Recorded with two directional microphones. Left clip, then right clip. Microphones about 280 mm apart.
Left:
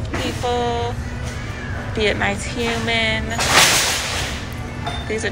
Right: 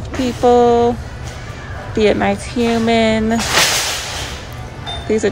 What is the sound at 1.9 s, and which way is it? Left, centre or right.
Speech, centre.